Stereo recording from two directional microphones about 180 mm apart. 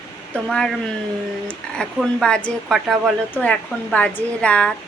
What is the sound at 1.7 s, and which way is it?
A woman's voice, 5° left (ahead or behind).